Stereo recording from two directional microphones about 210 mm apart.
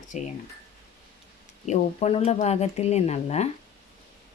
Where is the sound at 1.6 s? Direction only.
30° left (ahead or behind).